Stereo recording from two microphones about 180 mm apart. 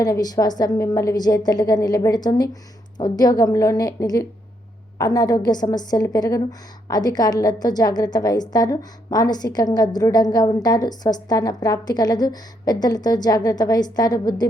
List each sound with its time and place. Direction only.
0.0 s a woman's voice: 20° left (ahead or behind)